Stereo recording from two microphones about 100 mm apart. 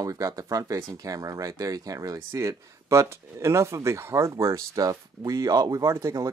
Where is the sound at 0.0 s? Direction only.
35° right (ahead or behind).